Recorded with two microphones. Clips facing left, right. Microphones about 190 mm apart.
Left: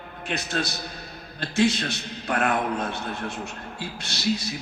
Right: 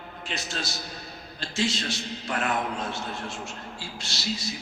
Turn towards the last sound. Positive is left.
turn(degrees=60)  # may be behind; listen again after turning